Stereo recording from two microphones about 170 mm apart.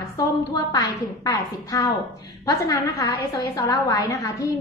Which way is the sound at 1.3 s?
20° left (ahead or behind).